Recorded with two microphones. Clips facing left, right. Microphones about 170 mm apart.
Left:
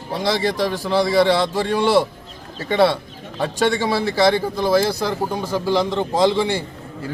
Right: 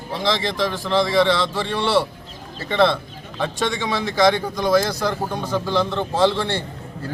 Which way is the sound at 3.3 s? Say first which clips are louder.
Left 4 dB; 35° left (ahead or behind).